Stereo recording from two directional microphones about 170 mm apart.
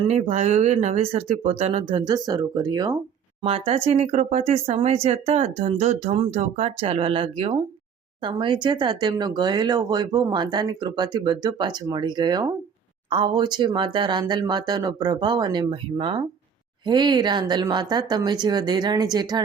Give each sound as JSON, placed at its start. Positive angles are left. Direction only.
{"t": 0.1, "sound": "speech", "side_deg": -40}
{"t": 3.4, "sound": "speech", "side_deg": -35}